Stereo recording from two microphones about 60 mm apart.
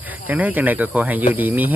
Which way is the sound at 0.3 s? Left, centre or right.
Right.